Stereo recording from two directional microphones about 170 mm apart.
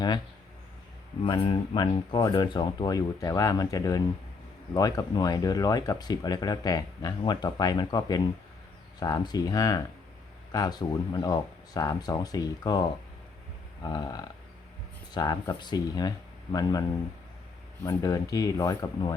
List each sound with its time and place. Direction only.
1.3 s speech: 30° left (ahead or behind)
13.8 s speech: 25° left (ahead or behind)
17.8 s speech: 20° left (ahead or behind)